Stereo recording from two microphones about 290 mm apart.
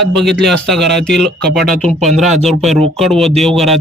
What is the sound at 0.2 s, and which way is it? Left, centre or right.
Speech, centre.